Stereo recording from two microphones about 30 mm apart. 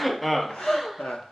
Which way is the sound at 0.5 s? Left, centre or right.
Centre.